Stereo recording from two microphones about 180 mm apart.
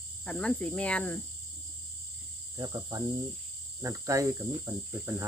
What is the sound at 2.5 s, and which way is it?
Cricket, 20° right (ahead or behind).